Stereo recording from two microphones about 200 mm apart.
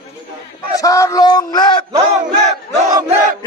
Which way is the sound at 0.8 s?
15° left (ahead or behind).